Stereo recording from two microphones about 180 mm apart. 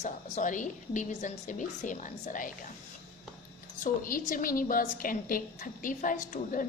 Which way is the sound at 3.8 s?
50° left (ahead or behind).